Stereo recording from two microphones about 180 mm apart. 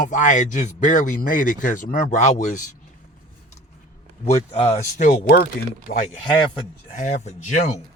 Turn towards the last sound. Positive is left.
turn(degrees=40)  # may be behind; listen again after turning